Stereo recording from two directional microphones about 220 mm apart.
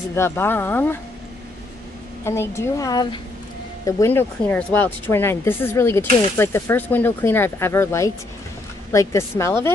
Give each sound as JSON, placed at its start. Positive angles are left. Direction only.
{"t": 0.1, "sound": "speech", "side_deg": 10}
{"t": 2.2, "sound": "speech", "side_deg": 10}